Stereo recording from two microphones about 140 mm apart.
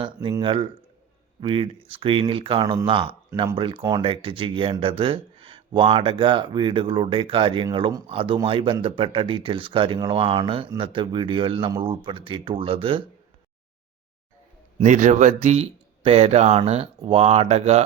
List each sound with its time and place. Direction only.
0.0 s speech: 35° right (ahead or behind)
14.8 s speech: 60° right (ahead or behind)